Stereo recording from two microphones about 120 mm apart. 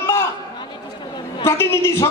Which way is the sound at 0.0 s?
20° left (ahead or behind).